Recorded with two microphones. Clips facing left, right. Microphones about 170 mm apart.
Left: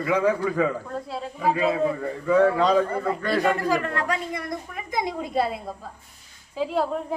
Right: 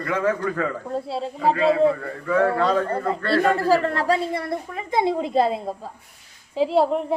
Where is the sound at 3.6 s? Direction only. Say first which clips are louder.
Right 5 dB; 30° right (ahead or behind).